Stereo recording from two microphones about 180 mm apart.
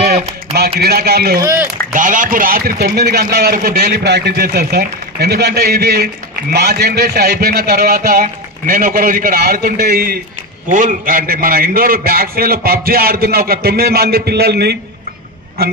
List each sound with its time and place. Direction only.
0.6 s a man's voice: 60° right (ahead or behind)
1.4 s speech: 15° right (ahead or behind)
2.0 s a man's voice: 45° right (ahead or behind)
10.7 s a man's voice: 45° right (ahead or behind); by 14.8 s 65° right (ahead or behind)